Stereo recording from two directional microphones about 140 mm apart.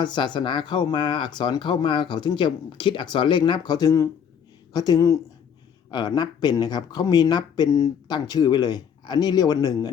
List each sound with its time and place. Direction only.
0.0 s speech: 35° left (ahead or behind)